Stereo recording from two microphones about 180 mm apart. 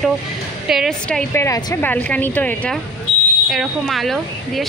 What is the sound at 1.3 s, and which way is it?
A woman's voice, 15° left (ahead or behind).